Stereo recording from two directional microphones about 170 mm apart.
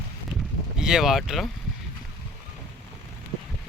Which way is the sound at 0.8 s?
5° right (ahead or behind).